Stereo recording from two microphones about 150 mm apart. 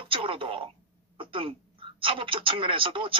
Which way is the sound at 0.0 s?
35° right (ahead or behind).